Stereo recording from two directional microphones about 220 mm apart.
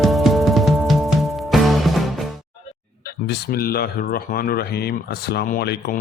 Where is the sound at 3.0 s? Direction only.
45° left (ahead or behind).